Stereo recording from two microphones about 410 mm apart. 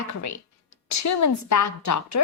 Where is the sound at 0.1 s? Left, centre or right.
Left.